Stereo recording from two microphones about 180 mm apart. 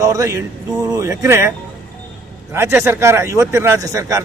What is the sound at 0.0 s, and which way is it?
A man's voice, 20° right (ahead or behind).